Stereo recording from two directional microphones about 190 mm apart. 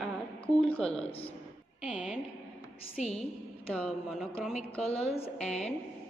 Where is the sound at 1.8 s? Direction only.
5° right (ahead or behind).